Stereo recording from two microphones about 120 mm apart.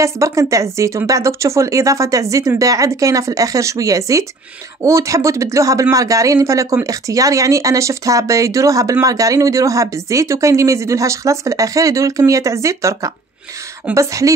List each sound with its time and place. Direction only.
0.0 s speech: 25° right (ahead or behind)